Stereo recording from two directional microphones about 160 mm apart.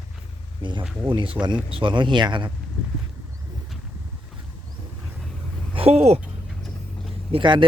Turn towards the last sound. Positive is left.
turn(degrees=-30)  # may be behind; listen again after turning